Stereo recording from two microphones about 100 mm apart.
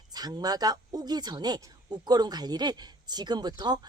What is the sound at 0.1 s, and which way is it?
Speech, 40° right (ahead or behind).